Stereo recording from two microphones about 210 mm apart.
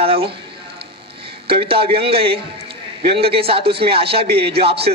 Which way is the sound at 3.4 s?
25° right (ahead or behind).